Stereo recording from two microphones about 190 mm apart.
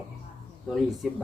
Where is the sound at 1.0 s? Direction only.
Centre (ahead or behind).